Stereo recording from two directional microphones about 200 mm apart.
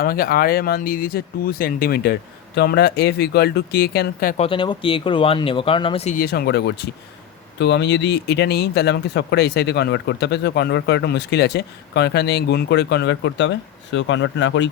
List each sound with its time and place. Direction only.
0.0 s speech: 45° left (ahead or behind)
4.4 s speech: 25° left (ahead or behind)
6.1 s speech: 50° left (ahead or behind); by 14.7 s 65° left (ahead or behind)